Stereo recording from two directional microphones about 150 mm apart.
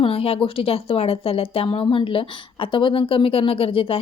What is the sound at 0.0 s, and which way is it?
Speech, 40° left (ahead or behind).